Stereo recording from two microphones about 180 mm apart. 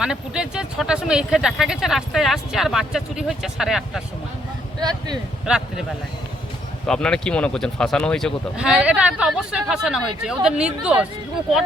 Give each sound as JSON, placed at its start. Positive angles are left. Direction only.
{"t": 0.0, "sound": "speech", "side_deg": -5}
{"t": 4.8, "sound": "speech", "side_deg": -20}
{"t": 5.5, "sound": "speech", "side_deg": -5}
{"t": 6.8, "sound": "speech", "side_deg": 5}